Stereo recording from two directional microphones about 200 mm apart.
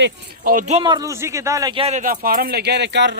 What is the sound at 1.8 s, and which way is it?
Speech, 35° right (ahead or behind).